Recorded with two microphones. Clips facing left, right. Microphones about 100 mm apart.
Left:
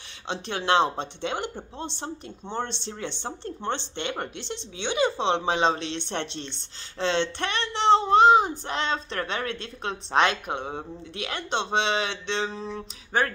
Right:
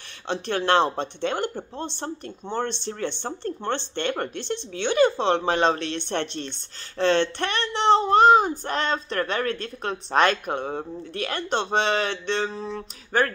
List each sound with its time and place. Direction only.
0.3 s speech: 15° left (ahead or behind)